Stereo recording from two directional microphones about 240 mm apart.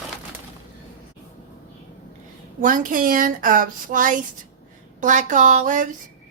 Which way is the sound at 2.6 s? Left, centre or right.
Right.